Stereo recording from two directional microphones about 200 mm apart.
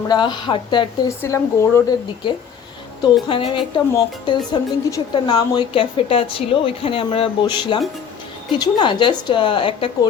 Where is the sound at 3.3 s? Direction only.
25° left (ahead or behind).